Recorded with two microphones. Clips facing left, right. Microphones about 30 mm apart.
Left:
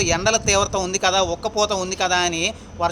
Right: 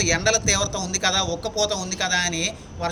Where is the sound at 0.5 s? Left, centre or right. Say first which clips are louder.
Left 5 dB; left.